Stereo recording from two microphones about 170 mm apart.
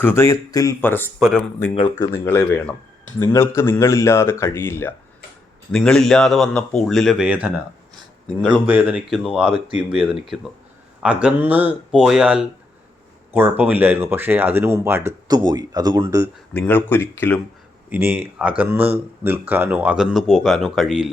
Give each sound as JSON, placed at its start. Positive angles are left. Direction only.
{"t": 0.0, "sound": "speech", "side_deg": 15}
{"t": 1.5, "sound": "speech", "side_deg": 20}
{"t": 2.2, "sound": "speech", "side_deg": 10}
{"t": 5.7, "sound": "speech", "side_deg": 5}
{"t": 8.4, "sound": "speech", "side_deg": 5}
{"t": 8.6, "sound": "speech", "side_deg": -10}
{"t": 16.6, "sound": "speech", "side_deg": 10}
{"t": 17.8, "sound": "speech", "side_deg": -10}